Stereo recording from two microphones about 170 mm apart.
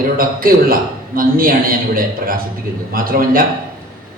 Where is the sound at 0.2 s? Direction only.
55° right (ahead or behind).